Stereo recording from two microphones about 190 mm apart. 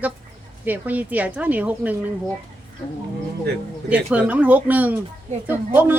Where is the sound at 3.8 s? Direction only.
5° right (ahead or behind).